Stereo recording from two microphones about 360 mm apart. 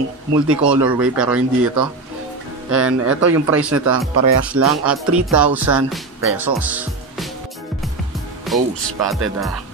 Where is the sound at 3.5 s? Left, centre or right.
Centre.